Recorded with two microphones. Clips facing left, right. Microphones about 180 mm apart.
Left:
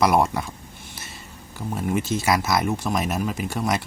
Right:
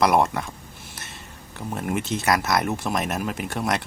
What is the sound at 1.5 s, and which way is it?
Speech, centre (ahead or behind).